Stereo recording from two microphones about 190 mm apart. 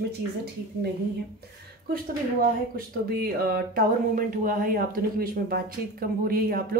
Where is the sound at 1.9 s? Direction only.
50° right (ahead or behind).